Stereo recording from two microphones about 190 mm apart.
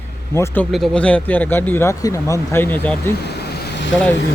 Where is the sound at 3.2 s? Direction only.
60° left (ahead or behind).